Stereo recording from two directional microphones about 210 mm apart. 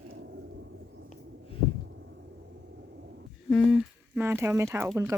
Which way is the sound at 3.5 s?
Centre (ahead or behind).